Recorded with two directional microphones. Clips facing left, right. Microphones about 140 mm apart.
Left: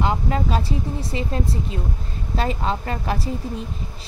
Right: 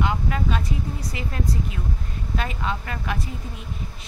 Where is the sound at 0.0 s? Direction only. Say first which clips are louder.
Left 3 dB; 35° left (ahead or behind).